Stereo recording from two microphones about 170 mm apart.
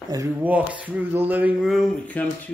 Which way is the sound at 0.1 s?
20° right (ahead or behind).